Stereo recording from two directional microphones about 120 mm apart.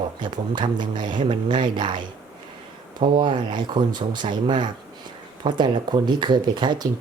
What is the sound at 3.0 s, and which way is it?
Speech, 40° right (ahead or behind).